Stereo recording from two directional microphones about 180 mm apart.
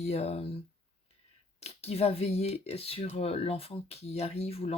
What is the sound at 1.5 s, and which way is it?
Speech, 35° left (ahead or behind).